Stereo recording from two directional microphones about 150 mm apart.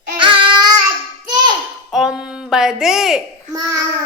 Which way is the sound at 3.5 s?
25° right (ahead or behind).